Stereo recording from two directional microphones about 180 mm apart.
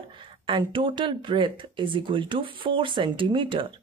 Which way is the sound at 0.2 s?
25° right (ahead or behind).